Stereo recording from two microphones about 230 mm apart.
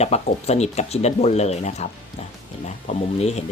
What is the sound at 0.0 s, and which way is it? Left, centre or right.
Speech, left.